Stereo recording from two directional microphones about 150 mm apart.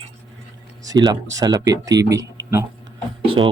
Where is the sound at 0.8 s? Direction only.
25° right (ahead or behind).